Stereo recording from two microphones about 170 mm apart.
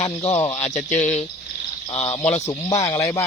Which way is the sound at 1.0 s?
40° left (ahead or behind).